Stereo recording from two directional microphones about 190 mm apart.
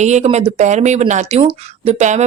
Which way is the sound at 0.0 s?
35° right (ahead or behind).